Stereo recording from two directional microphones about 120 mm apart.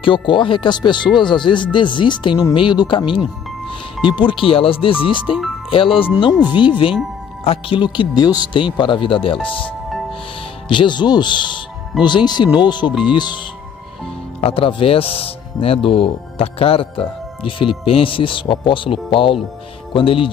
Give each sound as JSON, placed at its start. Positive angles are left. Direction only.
{"t": 0.0, "sound": "speech", "side_deg": 45}
{"t": 10.7, "sound": "speech", "side_deg": 40}
{"t": 14.4, "sound": "speech", "side_deg": 50}